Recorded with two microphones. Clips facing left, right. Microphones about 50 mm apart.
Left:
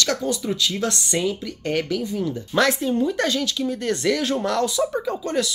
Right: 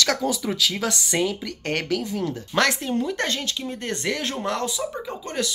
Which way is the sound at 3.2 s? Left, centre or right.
Right.